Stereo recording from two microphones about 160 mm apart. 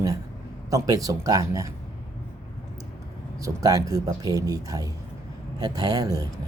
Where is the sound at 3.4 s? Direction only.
20° right (ahead or behind).